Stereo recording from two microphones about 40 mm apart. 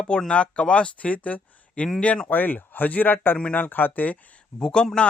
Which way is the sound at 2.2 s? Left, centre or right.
Left.